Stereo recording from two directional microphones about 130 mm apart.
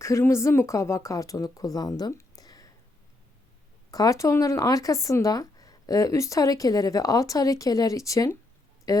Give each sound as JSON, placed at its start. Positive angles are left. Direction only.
{"t": 0.0, "sound": "speech", "side_deg": 20}
{"t": 3.9, "sound": "speech", "side_deg": 25}